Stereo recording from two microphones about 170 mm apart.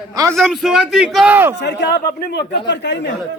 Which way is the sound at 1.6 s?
80° left.